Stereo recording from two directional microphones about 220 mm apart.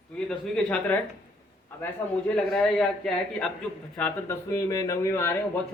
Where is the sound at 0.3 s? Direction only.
5° left (ahead or behind).